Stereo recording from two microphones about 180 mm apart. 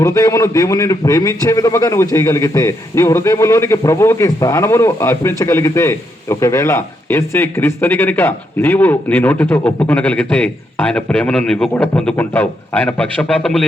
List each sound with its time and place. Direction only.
0.0 s a man's voice: 20° left (ahead or behind)